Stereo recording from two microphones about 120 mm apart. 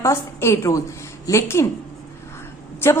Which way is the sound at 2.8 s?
20° left (ahead or behind).